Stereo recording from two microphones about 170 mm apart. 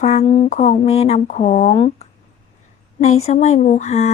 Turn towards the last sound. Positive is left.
turn(degrees=40)  # may be behind; listen again after turning